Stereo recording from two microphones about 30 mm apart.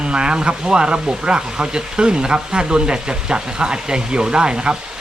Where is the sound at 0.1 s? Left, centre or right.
Right.